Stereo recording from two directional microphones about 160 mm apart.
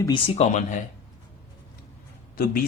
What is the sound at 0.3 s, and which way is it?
Speech, 45° left (ahead or behind).